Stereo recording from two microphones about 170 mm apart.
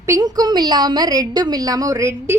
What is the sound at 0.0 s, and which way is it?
A woman's voice, 20° right (ahead or behind).